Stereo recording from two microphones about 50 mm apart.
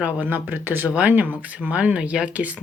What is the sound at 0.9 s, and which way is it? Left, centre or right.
Speech, right.